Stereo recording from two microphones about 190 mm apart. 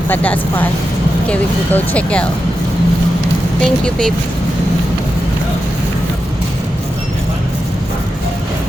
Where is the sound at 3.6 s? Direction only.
5° left (ahead or behind).